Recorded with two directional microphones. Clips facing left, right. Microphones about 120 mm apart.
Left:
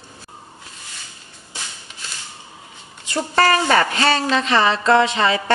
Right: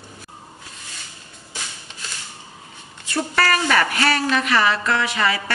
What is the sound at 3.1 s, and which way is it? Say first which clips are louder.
A woman's voice: left 3 dB; 25° left (ahead or behind).